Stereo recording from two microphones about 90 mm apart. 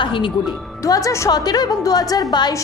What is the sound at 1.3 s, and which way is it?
A woman's voice, 45° left (ahead or behind).